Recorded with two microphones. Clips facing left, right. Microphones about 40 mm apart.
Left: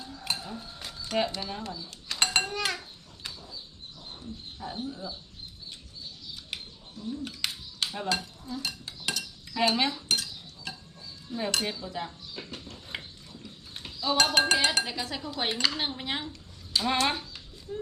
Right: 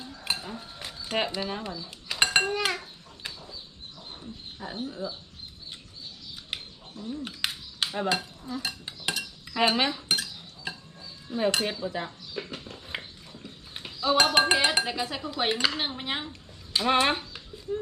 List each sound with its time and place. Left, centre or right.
0.0 s a sound: right
1.0 s speech: right
2.0 s dishes: centre
4.5 s speech: right
7.1 s dishes: right
11.3 s cutlery: centre
11.7 s speech: right
16.3 s a sound: right